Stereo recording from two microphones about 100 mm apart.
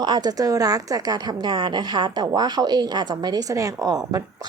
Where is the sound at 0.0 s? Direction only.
45° right (ahead or behind).